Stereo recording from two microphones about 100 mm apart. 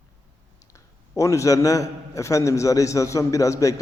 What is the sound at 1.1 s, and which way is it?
A man's voice, 30° left (ahead or behind).